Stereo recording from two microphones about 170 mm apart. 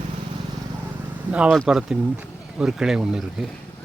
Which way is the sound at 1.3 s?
5° right (ahead or behind).